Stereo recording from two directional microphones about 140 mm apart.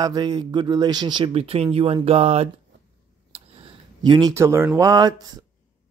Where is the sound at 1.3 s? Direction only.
45° right (ahead or behind).